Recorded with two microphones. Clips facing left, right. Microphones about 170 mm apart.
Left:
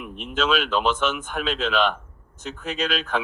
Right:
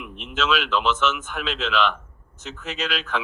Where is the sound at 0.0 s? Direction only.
45° left (ahead or behind).